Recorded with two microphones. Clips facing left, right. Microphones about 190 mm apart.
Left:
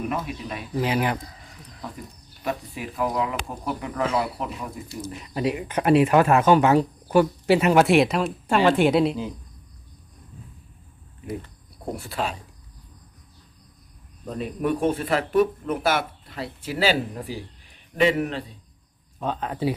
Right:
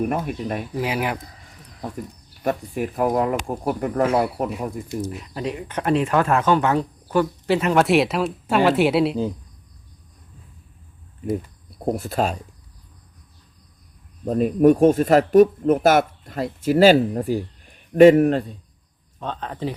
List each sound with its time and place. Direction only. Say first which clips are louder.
0.0 s speech: right 5 dB; 45° right (ahead or behind)
0.8 s speech: left 2 dB; 5° right (ahead or behind)
2.4 s speech: right 6 dB; 50° right (ahead or behind)
5.0 s speech: left 2 dB; centre (ahead or behind)
11.9 s speech: right 7 dB; 45° right (ahead or behind)
14.3 s a man's voice: right 10 dB; 45° right (ahead or behind)
19.2 s speech: left 2 dB; 10° left (ahead or behind)